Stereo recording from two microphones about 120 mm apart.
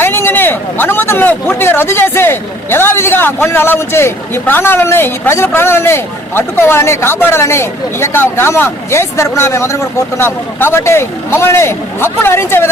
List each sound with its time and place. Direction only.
0.0 s a man's voice: 20° left (ahead or behind)